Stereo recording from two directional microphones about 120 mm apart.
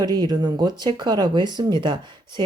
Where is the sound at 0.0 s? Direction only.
35° right (ahead or behind).